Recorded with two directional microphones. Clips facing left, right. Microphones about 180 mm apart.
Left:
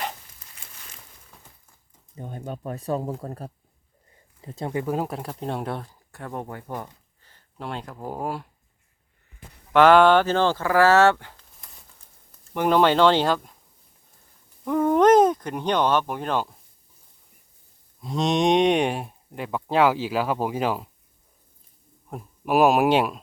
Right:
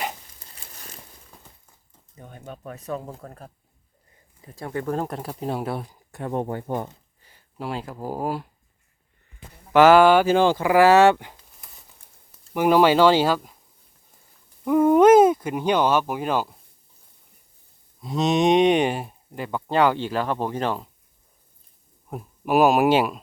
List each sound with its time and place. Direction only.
0.5 s a sound: 40° right (ahead or behind)
2.1 s speech: 35° left (ahead or behind)
4.4 s speech: 25° left (ahead or behind); by 6.9 s 25° right (ahead or behind)
7.2 s speech: 10° right (ahead or behind)
9.7 s speech: 5° right (ahead or behind)
11.6 s a sound: centre (ahead or behind)
12.5 s speech: 5° right (ahead or behind)
14.6 s speech: 5° right (ahead or behind)
18.0 s speech: centre (ahead or behind)
22.1 s speech: centre (ahead or behind)